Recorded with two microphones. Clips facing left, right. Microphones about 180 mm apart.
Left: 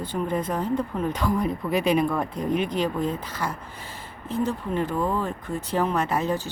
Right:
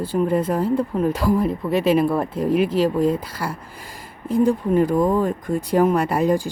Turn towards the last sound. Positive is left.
turn(degrees=-10)  # may be behind; listen again after turning